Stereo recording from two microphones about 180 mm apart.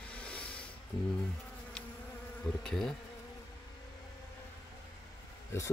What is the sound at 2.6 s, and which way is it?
Speech, 5° left (ahead or behind).